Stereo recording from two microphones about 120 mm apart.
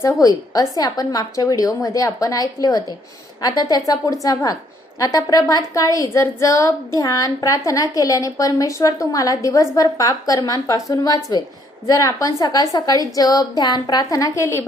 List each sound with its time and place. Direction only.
0.0 s a woman's voice: 25° left (ahead or behind)